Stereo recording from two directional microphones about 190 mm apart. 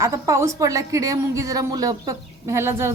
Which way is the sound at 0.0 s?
15° right (ahead or behind).